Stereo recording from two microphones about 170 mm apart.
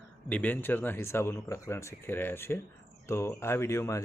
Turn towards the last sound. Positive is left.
turn(degrees=15)  # may be behind; listen again after turning